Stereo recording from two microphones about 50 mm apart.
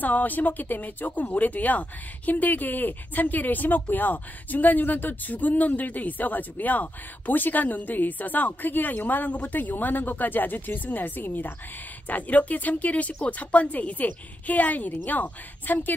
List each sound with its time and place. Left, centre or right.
0.0 s speech: left